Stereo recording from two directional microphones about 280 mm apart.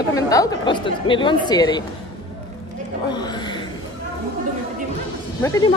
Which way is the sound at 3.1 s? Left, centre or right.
Centre.